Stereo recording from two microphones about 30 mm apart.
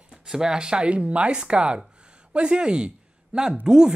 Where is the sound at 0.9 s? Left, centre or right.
Right.